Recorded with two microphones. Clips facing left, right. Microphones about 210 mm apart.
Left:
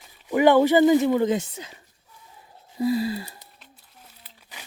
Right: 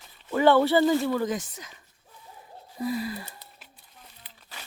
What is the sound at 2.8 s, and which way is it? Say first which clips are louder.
Gasp: left 6 dB; 30° left (ahead or behind).